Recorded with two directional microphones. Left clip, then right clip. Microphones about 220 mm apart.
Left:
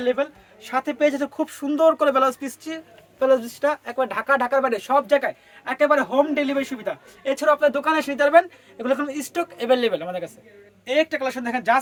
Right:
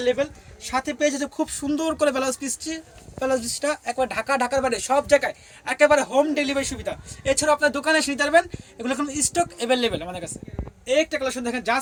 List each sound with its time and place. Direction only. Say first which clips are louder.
0.0 s a woman's voice: even; 15° left (ahead or behind)
0.6 s speech: left 2 dB; 30° left (ahead or behind)